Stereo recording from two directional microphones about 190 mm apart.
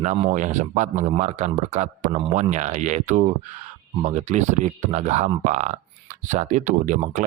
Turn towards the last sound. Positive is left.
turn(degrees=-40)  # may be behind; listen again after turning